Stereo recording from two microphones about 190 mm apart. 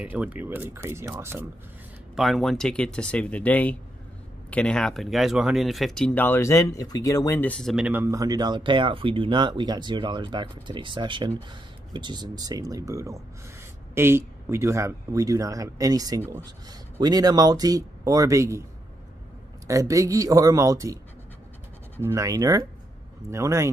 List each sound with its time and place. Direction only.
0.0 s speech: 10° right (ahead or behind)
2.1 s speech: centre (ahead or behind)
19.7 s speech: 15° right (ahead or behind)